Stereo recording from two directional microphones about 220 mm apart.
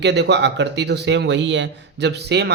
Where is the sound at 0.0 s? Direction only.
50° right (ahead or behind).